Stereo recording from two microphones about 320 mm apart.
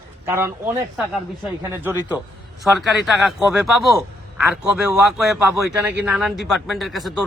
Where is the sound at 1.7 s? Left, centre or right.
Centre.